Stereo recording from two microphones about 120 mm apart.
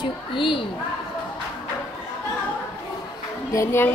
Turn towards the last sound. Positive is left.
turn(degrees=20)  # may be behind; listen again after turning